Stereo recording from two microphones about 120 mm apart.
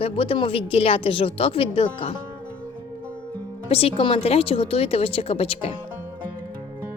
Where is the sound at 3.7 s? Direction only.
55° left (ahead or behind).